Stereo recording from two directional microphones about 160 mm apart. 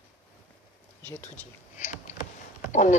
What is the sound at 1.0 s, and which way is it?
Speech, 10° left (ahead or behind).